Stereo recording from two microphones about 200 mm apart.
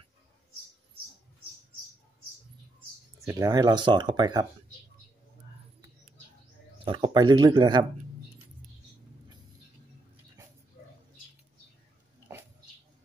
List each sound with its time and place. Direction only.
3.3 s speech: 15° right (ahead or behind)
6.8 s speech: 25° right (ahead or behind)